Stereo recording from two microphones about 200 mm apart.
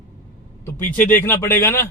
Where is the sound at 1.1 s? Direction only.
10° left (ahead or behind).